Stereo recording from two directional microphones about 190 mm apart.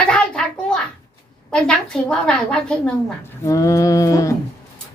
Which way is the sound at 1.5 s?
5° left (ahead or behind).